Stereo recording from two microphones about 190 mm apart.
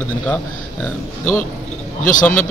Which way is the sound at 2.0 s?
45° left (ahead or behind).